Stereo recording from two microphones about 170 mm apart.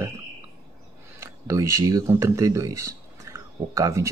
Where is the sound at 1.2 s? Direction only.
15° right (ahead or behind).